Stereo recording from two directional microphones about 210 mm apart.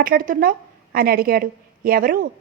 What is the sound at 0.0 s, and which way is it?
A woman's voice, 40° right (ahead or behind).